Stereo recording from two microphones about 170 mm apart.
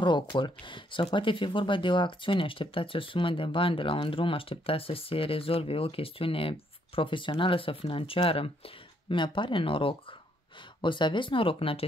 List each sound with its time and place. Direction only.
0.0 s speech: 25° left (ahead or behind)